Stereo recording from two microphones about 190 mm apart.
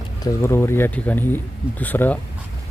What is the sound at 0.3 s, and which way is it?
Speech, 15° left (ahead or behind).